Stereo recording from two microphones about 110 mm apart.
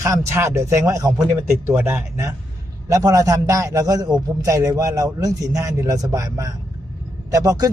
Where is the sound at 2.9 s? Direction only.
30° right (ahead or behind).